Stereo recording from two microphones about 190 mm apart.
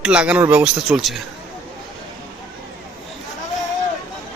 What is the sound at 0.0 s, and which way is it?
Speech, 5° right (ahead or behind).